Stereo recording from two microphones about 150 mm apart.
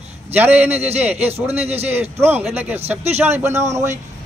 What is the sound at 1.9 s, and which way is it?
A man's voice, 15° right (ahead or behind).